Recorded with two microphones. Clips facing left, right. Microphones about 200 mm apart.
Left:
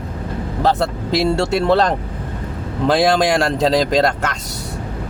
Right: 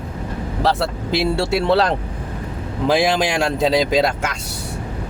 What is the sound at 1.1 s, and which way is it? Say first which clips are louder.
Speech: left 2 dB; 5° right (ahead or behind).